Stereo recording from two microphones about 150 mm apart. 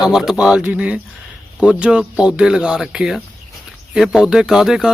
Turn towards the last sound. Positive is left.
turn(degrees=-5)  # may be behind; listen again after turning